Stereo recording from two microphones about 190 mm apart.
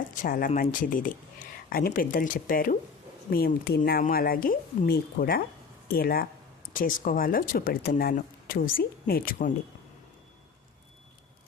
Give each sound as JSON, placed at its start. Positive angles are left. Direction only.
{"t": 0.2, "sound": "speech", "side_deg": 45}